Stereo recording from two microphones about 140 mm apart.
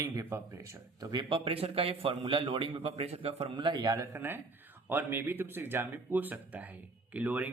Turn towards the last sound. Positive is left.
turn(degrees=-10)  # may be behind; listen again after turning